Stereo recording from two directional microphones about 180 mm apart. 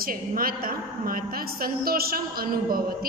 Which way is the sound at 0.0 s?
55° right (ahead or behind).